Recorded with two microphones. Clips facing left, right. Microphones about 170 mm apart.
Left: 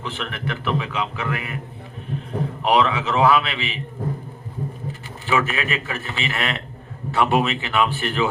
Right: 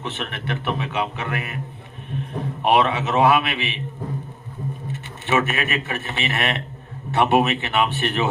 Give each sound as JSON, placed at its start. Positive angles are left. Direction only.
{"t": 0.0, "sound": "a man's voice", "side_deg": -20}
{"t": 2.6, "sound": "a man's voice", "side_deg": -20}
{"t": 4.9, "sound": "a man's voice", "side_deg": -20}